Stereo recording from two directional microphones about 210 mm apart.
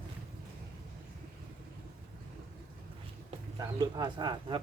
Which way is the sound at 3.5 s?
20° right (ahead or behind).